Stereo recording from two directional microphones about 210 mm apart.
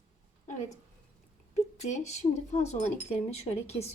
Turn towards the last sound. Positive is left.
turn(degrees=30)  # may be behind; listen again after turning